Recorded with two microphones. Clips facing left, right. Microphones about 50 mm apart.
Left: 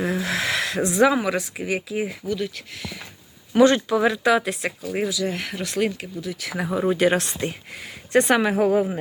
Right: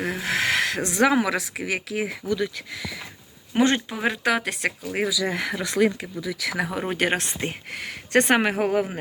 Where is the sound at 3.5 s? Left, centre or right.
Right.